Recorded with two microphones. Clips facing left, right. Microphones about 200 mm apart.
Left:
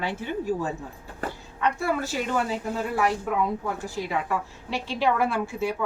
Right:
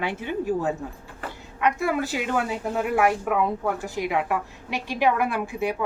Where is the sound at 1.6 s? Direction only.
15° right (ahead or behind).